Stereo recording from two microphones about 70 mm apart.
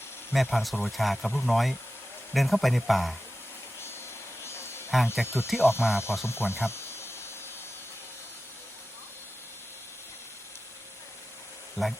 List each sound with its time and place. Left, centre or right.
0.5 s speech: centre
4.4 s a sound: left
5.2 s speech: left
6.2 s cricket: left
11.8 s speech: centre